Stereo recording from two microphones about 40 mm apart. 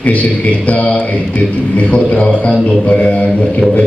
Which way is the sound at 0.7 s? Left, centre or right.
Left.